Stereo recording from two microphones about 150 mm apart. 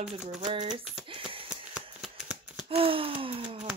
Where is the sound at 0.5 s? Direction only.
45° right (ahead or behind).